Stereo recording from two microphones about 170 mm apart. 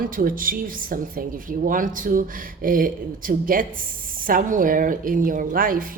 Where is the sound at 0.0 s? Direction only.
55° right (ahead or behind).